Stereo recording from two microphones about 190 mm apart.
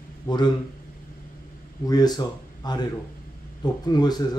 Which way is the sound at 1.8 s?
20° left (ahead or behind).